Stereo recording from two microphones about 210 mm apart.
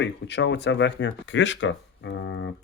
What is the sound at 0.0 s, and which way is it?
Speech, 55° left (ahead or behind).